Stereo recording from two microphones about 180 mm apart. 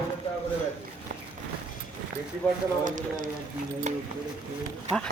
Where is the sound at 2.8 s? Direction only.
45° right (ahead or behind).